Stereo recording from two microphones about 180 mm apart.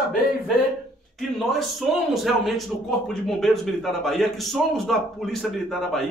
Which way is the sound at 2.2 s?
Centre (ahead or behind).